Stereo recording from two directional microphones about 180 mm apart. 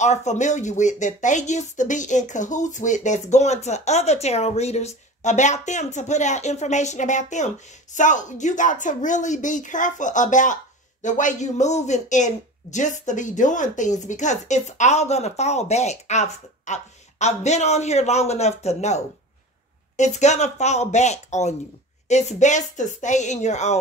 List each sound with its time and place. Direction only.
0.0 s speech: 40° left (ahead or behind)
20.0 s speech: 40° left (ahead or behind)